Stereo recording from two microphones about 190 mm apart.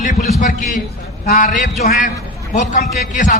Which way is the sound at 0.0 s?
45° left (ahead or behind).